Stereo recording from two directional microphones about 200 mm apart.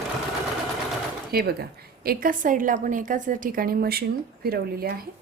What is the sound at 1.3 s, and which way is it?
A woman's voice, 50° right (ahead or behind).